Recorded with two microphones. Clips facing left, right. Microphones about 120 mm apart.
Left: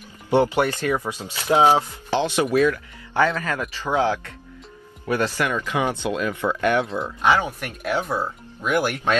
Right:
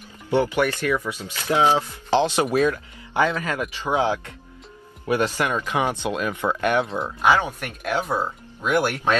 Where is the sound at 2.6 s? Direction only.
20° right (ahead or behind).